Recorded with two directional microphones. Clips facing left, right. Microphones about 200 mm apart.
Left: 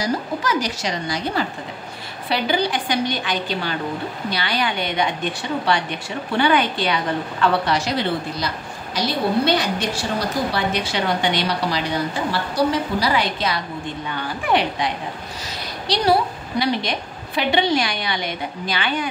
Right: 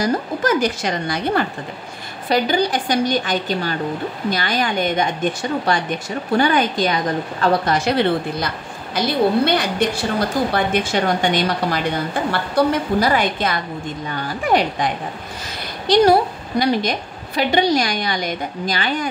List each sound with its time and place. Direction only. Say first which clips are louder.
0.0 s a woman's voice: right 4 dB; 55° right (ahead or behind)
2.2 s a woman's voice: right 3 dB; 45° right (ahead or behind)
15.9 s a woman's voice: right 5 dB; 45° right (ahead or behind)